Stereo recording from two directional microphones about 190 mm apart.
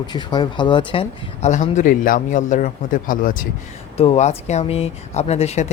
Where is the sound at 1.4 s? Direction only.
40° left (ahead or behind).